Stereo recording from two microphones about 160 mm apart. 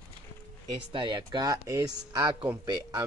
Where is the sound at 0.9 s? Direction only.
30° right (ahead or behind).